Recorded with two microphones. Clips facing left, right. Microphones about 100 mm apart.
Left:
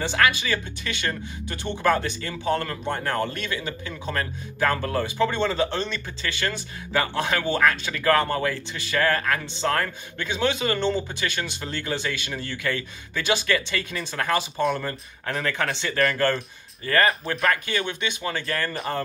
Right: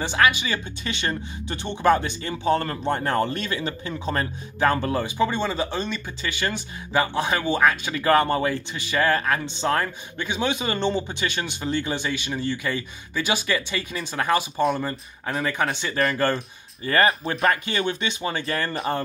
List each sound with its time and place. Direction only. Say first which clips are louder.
0.0 s speech: right 1 dB; 15° right (ahead or behind)
2.6 s speech: right 3 dB; 35° right (ahead or behind)
4.8 s speech: right 1 dB; 15° right (ahead or behind)
17.5 s speech: right 2 dB; 35° right (ahead or behind)